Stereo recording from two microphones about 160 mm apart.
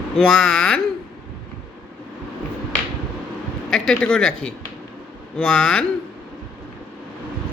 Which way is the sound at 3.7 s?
5° left (ahead or behind).